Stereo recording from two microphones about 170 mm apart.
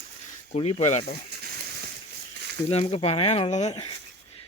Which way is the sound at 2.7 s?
35° left (ahead or behind).